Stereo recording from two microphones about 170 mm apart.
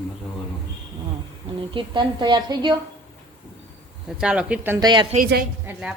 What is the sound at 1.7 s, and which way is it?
Speech, 25° right (ahead or behind).